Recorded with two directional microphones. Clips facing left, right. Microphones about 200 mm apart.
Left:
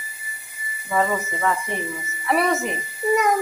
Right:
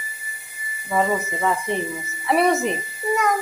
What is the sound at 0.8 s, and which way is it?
Speech, 20° right (ahead or behind).